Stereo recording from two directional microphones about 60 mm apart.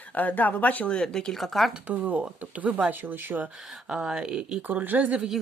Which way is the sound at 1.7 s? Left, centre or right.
Right.